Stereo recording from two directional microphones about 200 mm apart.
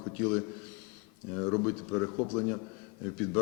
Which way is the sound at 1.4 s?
10° left (ahead or behind).